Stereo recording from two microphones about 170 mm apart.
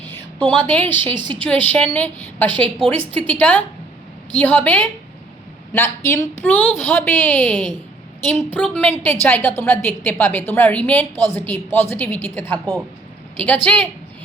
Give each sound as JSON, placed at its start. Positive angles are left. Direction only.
{"t": 0.0, "sound": "a woman's voice", "side_deg": 10}
{"t": 1.1, "sound": "speech", "side_deg": -25}
{"t": 1.4, "sound": "a woman's voice", "side_deg": 10}